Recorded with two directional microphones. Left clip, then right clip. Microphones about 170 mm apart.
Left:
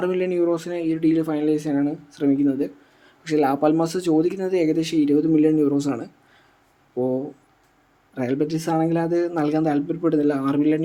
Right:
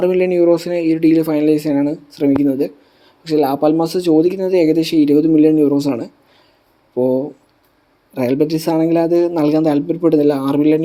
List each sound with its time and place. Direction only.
0.0 s speech: 25° right (ahead or behind)
3.2 s speech: 5° right (ahead or behind)